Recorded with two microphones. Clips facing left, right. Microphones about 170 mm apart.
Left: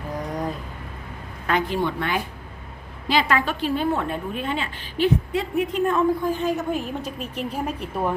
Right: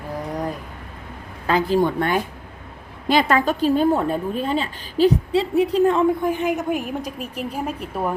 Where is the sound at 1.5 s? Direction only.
35° right (ahead or behind).